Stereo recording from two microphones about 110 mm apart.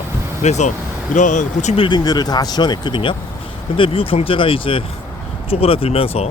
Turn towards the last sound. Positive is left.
turn(degrees=65)  # may be behind; listen again after turning